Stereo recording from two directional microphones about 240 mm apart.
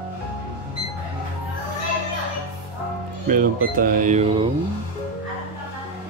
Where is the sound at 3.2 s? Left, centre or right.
Right.